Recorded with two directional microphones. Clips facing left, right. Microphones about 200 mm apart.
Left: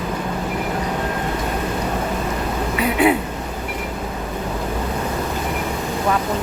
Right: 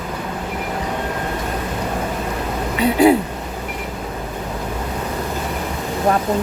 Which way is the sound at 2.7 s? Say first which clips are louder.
Right 4 dB; 30° right (ahead or behind).